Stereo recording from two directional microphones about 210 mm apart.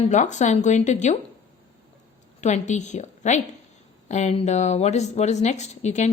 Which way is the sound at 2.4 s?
35° left (ahead or behind).